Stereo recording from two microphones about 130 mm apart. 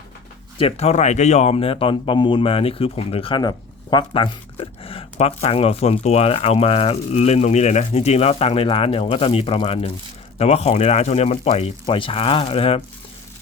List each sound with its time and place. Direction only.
0.6 s speech: 55° left (ahead or behind)